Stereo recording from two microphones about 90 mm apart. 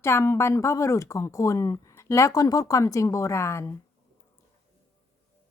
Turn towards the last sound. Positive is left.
turn(degrees=30)  # may be behind; listen again after turning